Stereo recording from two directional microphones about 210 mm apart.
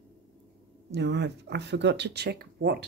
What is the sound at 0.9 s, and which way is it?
Speech, 55° right (ahead or behind).